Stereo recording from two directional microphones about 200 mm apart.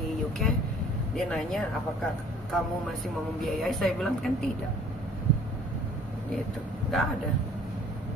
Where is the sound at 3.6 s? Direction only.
Centre (ahead or behind).